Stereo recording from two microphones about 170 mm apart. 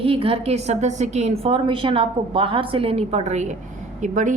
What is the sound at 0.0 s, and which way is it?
A woman's voice, 35° right (ahead or behind).